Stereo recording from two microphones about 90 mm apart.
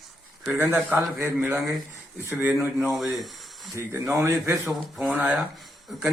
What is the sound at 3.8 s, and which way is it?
Speech, 30° right (ahead or behind).